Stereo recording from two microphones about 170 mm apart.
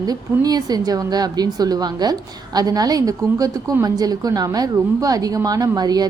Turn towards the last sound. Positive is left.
turn(degrees=-25)  # may be behind; listen again after turning